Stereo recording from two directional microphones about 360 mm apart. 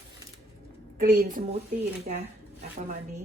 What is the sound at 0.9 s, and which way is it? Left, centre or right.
Speech, right.